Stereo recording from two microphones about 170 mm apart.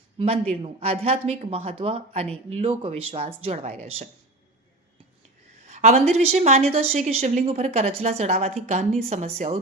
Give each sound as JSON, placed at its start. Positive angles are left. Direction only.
{"t": 0.2, "sound": "speech", "side_deg": -35}
{"t": 5.6, "sound": "a woman's voice", "side_deg": -40}